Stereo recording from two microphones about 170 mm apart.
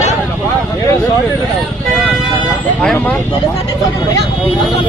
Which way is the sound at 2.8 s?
5° left (ahead or behind).